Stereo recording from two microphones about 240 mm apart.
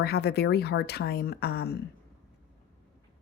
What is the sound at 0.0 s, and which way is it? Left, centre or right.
Speech, left.